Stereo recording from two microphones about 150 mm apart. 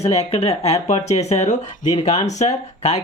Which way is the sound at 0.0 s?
45° left (ahead or behind).